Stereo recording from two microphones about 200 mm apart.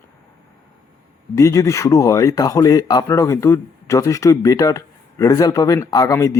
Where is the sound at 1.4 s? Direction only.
15° left (ahead or behind).